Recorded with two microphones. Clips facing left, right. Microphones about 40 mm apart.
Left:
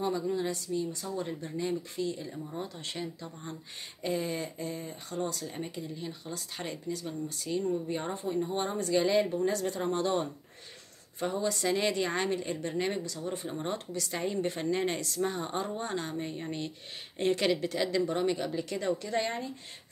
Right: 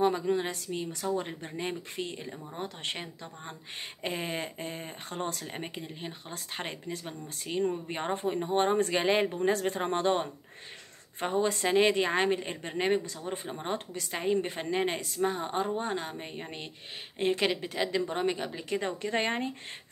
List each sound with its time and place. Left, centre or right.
0.0 s speech: right